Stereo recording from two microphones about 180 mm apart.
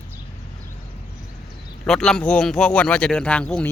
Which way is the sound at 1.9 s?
5° left (ahead or behind).